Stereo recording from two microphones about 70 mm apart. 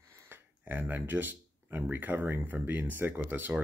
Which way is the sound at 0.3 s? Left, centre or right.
Right.